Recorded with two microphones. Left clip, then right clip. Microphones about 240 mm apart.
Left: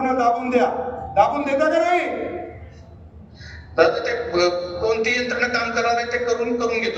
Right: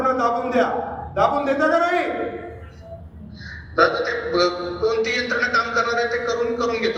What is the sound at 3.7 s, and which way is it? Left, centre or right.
A man's voice, left.